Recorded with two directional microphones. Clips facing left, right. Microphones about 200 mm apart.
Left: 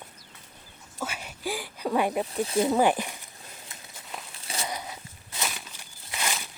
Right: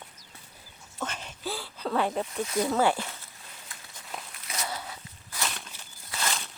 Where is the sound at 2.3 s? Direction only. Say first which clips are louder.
Left 3 dB; 30° left (ahead or behind).